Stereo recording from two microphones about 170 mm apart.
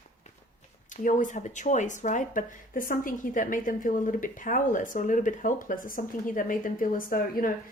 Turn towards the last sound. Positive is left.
turn(degrees=55)  # may be behind; listen again after turning